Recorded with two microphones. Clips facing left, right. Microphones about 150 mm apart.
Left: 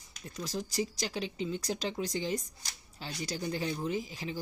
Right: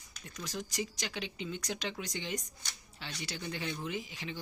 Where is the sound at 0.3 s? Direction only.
35° left (ahead or behind).